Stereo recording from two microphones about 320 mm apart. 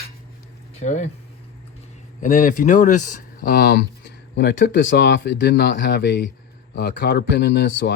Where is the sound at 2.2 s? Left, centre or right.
Left.